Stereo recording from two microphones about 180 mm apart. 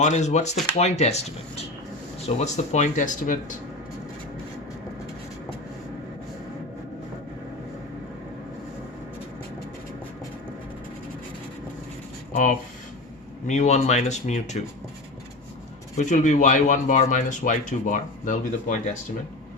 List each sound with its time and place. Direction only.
0.0 s speech: 40° left (ahead or behind)
12.3 s speech: 50° left (ahead or behind)
16.0 s speech: 40° left (ahead or behind)